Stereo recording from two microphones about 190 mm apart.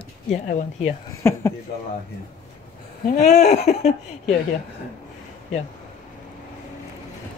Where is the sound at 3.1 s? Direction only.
35° left (ahead or behind).